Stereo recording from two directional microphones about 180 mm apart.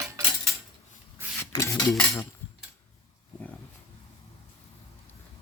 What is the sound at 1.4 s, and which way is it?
Dishes, 15° left (ahead or behind).